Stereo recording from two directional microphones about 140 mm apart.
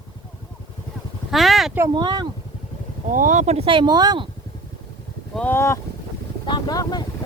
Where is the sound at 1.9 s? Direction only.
35° right (ahead or behind).